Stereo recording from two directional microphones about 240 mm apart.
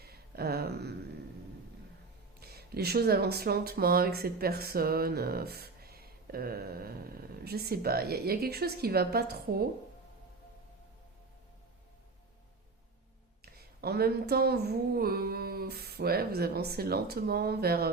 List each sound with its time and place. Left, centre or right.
0.0 s a sound: right
2.4 s speech: right
13.4 s speech: right